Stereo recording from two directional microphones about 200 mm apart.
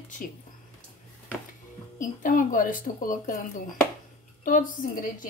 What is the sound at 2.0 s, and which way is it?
Speech, 40° left (ahead or behind).